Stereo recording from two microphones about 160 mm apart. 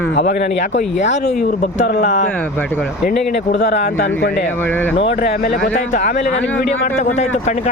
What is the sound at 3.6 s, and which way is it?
Speech, 90° left.